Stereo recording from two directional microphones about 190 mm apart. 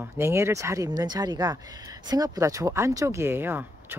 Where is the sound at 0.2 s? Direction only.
15° right (ahead or behind).